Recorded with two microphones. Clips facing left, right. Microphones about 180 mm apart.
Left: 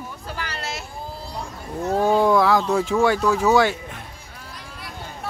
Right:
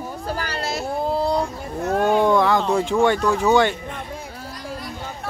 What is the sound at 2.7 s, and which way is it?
Speech, 5° left (ahead or behind).